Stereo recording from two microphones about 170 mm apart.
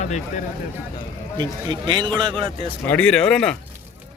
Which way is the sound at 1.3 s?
25° right (ahead or behind).